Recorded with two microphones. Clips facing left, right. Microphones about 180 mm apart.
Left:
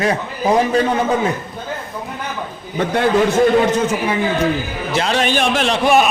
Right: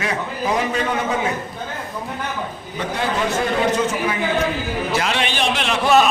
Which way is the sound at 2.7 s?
55° left (ahead or behind).